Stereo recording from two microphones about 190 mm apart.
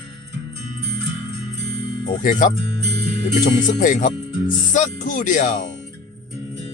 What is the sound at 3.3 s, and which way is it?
Speech, 40° left (ahead or behind).